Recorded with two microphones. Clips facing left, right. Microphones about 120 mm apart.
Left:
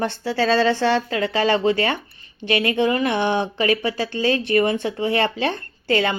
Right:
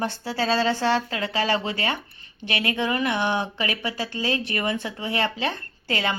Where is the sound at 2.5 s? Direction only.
30° left (ahead or behind).